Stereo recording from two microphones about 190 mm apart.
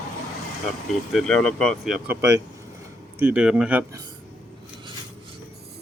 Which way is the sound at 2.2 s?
15° right (ahead or behind).